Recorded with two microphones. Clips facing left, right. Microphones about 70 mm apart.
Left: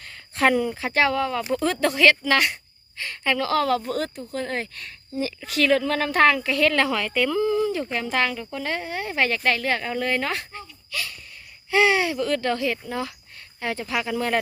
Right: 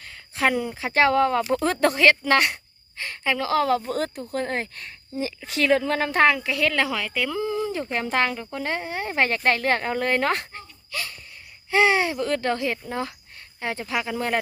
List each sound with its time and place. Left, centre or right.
0.0 s a sound: centre
0.9 s speech: right
3.2 s a woman's voice: centre
7.4 s a woman's voice: right
10.9 s a sound: right
11.7 s a woman's voice: right